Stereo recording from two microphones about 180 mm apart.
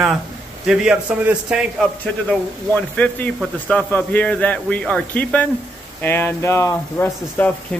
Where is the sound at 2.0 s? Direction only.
10° left (ahead or behind).